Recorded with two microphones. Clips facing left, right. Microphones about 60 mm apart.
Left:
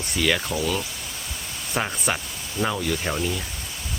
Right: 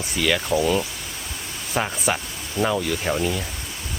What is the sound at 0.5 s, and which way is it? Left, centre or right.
Speech, centre.